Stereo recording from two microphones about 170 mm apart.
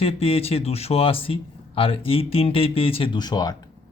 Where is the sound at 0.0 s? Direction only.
35° left (ahead or behind).